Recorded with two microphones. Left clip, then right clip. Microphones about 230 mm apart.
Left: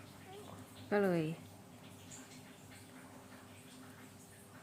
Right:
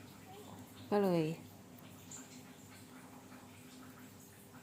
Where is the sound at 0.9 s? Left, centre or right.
Centre.